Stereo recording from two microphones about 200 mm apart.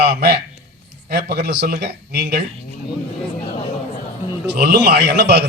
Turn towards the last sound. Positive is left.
turn(degrees=-55)  # may be behind; listen again after turning